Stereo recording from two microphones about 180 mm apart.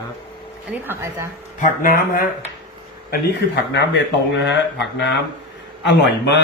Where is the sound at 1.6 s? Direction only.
50° left (ahead or behind).